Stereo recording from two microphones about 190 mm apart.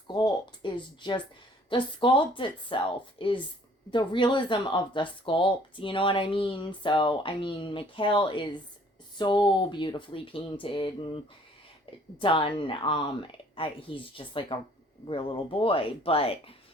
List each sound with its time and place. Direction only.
0.1 s speech: 20° left (ahead or behind)